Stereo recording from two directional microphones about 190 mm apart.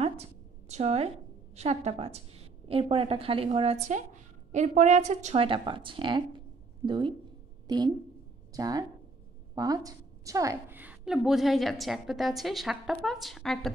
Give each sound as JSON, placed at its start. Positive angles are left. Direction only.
{"t": 0.0, "sound": "a woman's voice", "side_deg": -35}